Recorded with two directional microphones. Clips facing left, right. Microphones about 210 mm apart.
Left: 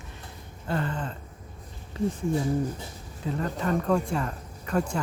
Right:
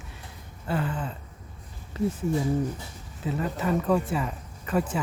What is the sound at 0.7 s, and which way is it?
Speech, 5° right (ahead or behind).